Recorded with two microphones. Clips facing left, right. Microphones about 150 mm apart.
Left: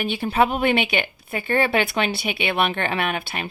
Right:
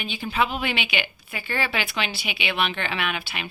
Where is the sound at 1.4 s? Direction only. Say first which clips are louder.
Left 8 dB; 55° left (ahead or behind).